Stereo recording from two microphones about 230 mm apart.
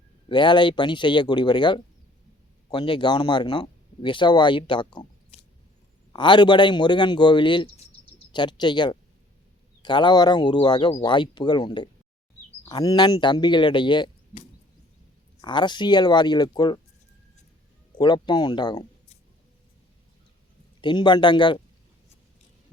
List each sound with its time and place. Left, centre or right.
0.3 s speech: left
17.9 s speech: centre
20.8 s speech: centre